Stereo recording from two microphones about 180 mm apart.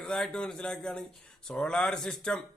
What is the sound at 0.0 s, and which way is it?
A man's voice, 5° left (ahead or behind).